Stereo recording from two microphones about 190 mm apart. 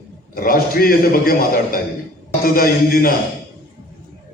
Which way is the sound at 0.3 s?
50° left (ahead or behind).